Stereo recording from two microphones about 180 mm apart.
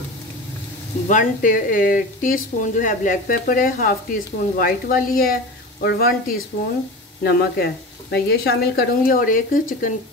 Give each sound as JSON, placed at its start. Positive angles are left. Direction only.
{"t": 1.0, "sound": "speech", "side_deg": 45}